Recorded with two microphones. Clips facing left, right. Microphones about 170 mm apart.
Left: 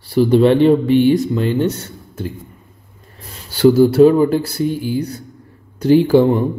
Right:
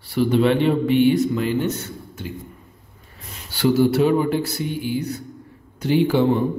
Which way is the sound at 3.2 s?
40° left (ahead or behind).